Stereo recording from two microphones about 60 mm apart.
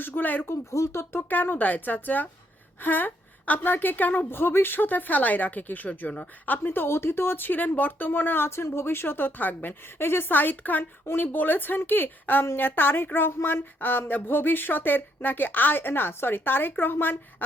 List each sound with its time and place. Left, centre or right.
0.0 s speech: left
0.4 s speech: left
1.1 s speech: left
6.6 s speech: left